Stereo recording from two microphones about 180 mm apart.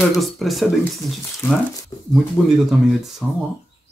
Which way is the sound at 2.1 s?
Centre (ahead or behind).